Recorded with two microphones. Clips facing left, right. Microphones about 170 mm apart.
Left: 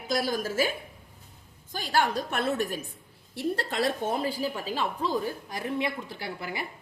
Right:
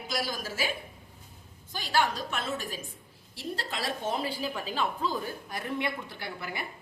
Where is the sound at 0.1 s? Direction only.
50° left (ahead or behind).